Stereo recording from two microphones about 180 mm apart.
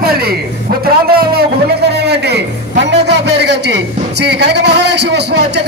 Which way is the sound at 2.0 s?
65° right (ahead or behind).